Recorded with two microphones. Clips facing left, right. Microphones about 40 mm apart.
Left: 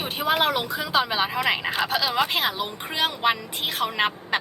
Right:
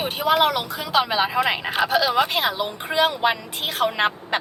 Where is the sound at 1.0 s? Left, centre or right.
Centre.